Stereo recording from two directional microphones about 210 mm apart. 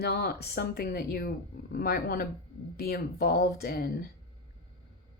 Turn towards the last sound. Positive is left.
turn(degrees=45)  # may be behind; listen again after turning